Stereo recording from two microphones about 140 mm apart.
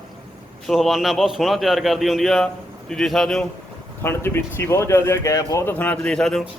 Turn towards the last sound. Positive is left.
turn(degrees=5)  # may be behind; listen again after turning